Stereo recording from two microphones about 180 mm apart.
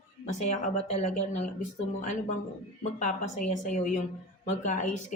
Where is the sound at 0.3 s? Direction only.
40° left (ahead or behind).